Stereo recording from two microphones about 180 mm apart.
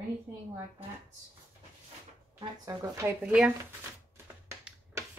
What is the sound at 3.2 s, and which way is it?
Speech, 5° right (ahead or behind).